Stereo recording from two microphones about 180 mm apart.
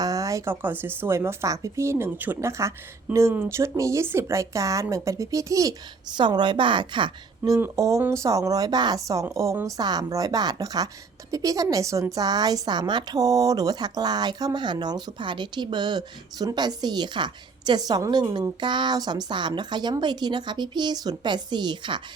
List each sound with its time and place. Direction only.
0.0 s speech: 20° right (ahead or behind)